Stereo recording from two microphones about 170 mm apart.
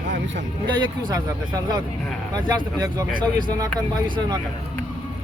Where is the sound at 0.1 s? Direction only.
90° right.